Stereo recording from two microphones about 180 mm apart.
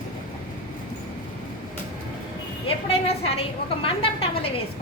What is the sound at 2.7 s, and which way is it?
A woman's voice, 30° left (ahead or behind).